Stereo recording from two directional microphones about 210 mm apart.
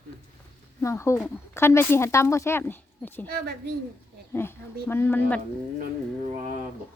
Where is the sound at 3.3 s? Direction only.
50° right (ahead or behind).